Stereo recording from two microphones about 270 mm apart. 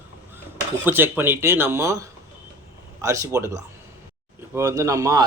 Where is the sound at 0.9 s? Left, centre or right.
Centre.